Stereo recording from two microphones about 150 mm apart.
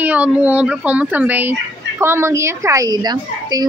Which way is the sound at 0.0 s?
10° right (ahead or behind).